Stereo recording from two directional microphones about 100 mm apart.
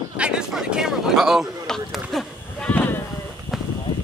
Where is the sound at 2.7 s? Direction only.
20° left (ahead or behind).